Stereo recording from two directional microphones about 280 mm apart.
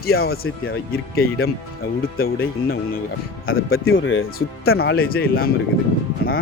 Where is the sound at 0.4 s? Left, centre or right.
Left.